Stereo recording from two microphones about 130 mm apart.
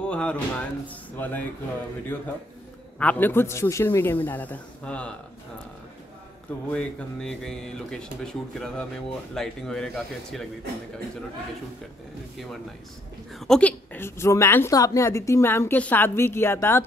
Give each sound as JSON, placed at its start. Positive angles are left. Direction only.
{"t": 0.0, "sound": "a man's voice", "side_deg": 10}
{"t": 6.7, "sound": "speech", "side_deg": 10}
{"t": 13.4, "sound": "a woman's voice", "side_deg": 5}